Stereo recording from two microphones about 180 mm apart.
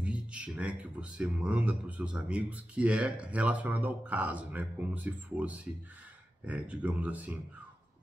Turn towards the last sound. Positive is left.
turn(degrees=-10)  # may be behind; listen again after turning